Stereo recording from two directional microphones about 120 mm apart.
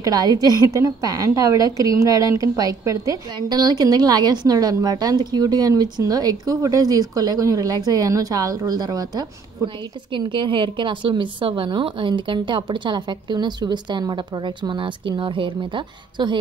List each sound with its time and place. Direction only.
0.0 s a woman's voice: 30° right (ahead or behind)